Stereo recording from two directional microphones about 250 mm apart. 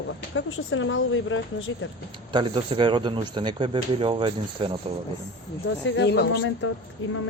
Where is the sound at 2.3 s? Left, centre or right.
Centre.